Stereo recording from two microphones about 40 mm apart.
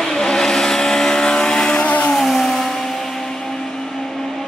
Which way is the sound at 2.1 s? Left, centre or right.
Centre.